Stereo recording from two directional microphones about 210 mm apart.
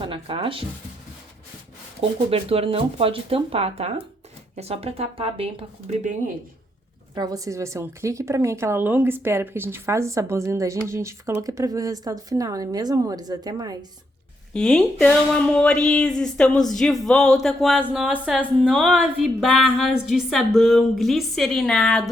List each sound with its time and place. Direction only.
0.0 s speech: 25° right (ahead or behind)
2.0 s speech: 30° right (ahead or behind)
7.2 s speech: 15° right (ahead or behind)
14.5 s a woman's voice: 5° left (ahead or behind)